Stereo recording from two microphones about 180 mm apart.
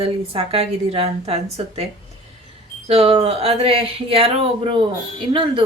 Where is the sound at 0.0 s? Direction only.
30° right (ahead or behind).